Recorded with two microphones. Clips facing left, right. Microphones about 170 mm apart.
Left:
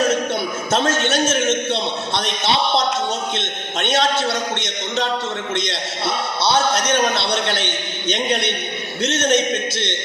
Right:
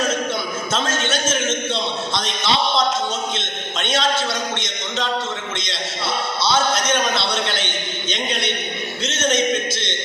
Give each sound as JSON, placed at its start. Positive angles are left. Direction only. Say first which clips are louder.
{"t": 0.7, "sound": "a man's voice", "louder": "left 5 dB", "side_deg": 65}